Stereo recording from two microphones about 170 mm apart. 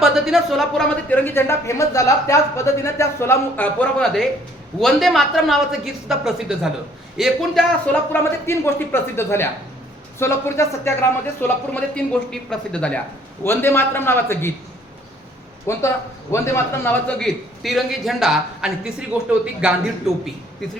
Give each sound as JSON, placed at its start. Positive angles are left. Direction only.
{"t": 0.0, "sound": "a woman's voice", "side_deg": 0}
{"t": 8.1, "sound": "a woman's voice", "side_deg": 15}
{"t": 15.7, "sound": "a woman's voice", "side_deg": 15}